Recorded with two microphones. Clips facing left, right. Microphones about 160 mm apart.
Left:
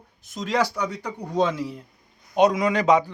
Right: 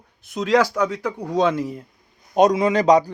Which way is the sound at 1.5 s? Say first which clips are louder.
Right 5 dB; 50° right (ahead or behind).